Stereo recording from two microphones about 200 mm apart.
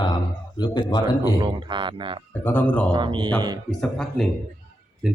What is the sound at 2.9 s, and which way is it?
Speech, 25° right (ahead or behind).